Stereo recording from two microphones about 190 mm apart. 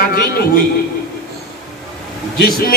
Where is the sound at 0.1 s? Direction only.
55° left (ahead or behind).